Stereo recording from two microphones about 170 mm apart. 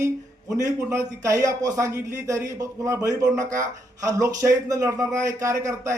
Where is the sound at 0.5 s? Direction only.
20° right (ahead or behind).